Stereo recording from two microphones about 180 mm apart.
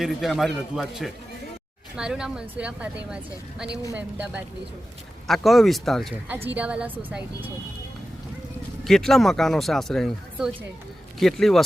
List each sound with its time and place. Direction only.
0.0 s a woman's voice: centre (ahead or behind)
8.8 s speech: centre (ahead or behind)